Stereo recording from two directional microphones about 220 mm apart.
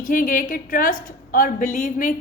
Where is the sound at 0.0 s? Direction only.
40° left (ahead or behind).